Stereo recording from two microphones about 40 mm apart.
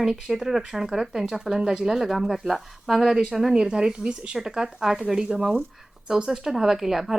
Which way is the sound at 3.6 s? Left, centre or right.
Centre.